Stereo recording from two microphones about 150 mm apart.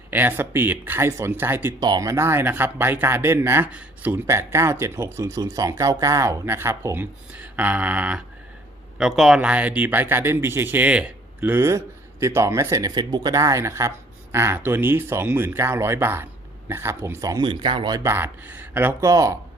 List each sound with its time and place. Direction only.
0.1 s speech: 15° right (ahead or behind)
1.8 s speech: 25° right (ahead or behind)